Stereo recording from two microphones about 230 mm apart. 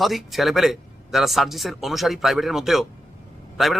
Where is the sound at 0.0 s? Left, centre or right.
Centre.